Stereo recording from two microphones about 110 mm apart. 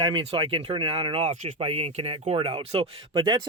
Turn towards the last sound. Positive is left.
turn(degrees=-40)  # may be behind; listen again after turning